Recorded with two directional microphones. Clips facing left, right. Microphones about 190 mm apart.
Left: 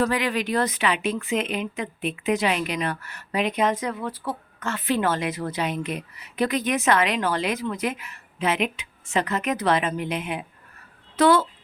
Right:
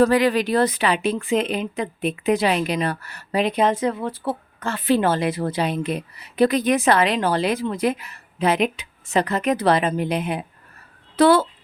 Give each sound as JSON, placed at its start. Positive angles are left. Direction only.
{"t": 0.0, "sound": "speech", "side_deg": -35}